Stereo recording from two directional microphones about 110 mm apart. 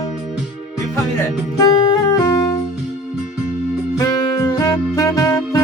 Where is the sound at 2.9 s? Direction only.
5° right (ahead or behind).